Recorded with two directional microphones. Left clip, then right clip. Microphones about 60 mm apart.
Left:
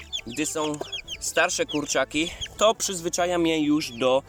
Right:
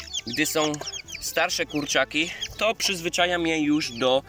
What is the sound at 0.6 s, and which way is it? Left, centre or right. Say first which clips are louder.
Speech: right 3 dB; left.